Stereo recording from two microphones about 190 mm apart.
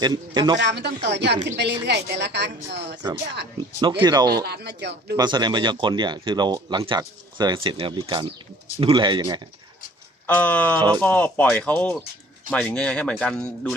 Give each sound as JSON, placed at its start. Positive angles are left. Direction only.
{"t": 0.0, "sound": "speech", "side_deg": -20}
{"t": 0.6, "sound": "speech", "side_deg": -65}
{"t": 3.8, "sound": "speech", "side_deg": -25}
{"t": 4.4, "sound": "speech", "side_deg": -60}
{"t": 5.1, "sound": "speech", "side_deg": -20}
{"t": 10.2, "sound": "speech", "side_deg": 10}